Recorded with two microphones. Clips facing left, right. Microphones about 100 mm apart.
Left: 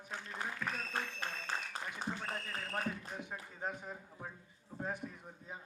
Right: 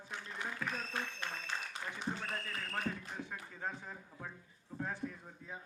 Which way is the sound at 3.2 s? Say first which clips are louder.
Even; 20° left (ahead or behind).